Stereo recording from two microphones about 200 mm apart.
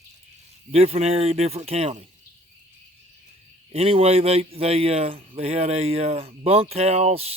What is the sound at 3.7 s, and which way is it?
A man's voice, 30° right (ahead or behind).